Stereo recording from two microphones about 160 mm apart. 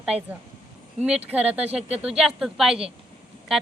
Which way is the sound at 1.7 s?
40° right (ahead or behind).